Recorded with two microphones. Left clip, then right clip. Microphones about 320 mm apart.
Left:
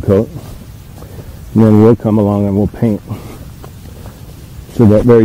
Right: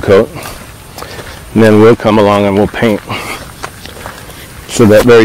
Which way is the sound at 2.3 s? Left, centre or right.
Centre.